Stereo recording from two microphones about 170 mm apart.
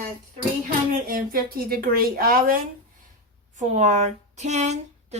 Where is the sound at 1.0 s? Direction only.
60° right (ahead or behind).